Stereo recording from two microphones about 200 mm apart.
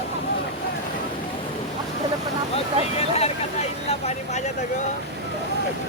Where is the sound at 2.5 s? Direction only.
30° left (ahead or behind).